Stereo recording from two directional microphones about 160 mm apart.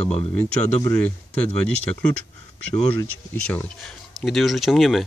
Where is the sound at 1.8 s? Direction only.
10° left (ahead or behind).